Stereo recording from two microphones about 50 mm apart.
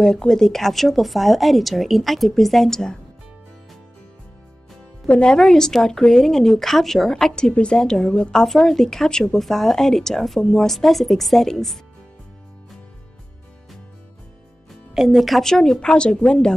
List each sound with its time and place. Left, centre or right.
0.0 s speech: centre
5.0 s speech: left
5.3 s speech: centre
14.7 s music: centre
15.4 s speech: centre